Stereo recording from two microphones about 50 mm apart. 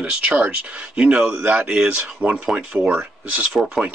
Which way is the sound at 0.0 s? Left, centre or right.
Right.